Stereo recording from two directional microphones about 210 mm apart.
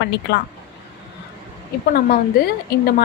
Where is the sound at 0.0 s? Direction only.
55° left (ahead or behind).